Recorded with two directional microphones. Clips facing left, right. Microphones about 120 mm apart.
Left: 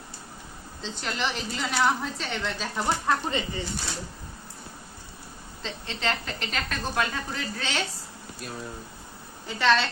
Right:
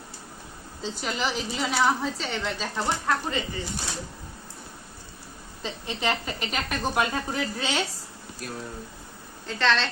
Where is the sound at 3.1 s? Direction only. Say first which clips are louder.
Left 1 dB; 20° left (ahead or behind).